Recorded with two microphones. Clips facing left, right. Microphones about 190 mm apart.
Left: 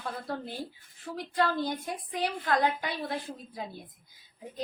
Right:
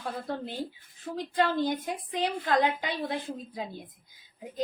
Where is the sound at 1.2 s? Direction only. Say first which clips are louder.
Right 2 dB; 20° right (ahead or behind).